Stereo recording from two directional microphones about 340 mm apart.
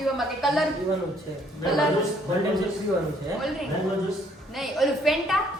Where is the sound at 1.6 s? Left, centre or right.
Centre.